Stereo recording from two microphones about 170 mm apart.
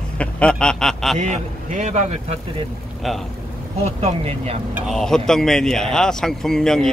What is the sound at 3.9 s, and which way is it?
Speech, 40° right (ahead or behind).